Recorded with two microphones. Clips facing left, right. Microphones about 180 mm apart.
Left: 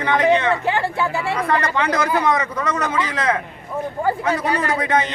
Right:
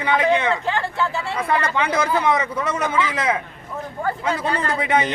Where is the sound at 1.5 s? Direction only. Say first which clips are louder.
Even; 10° right (ahead or behind).